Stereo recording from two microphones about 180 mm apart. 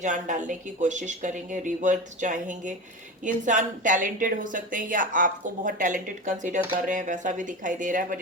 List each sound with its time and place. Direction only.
0.0 s a woman's voice: 45° right (ahead or behind)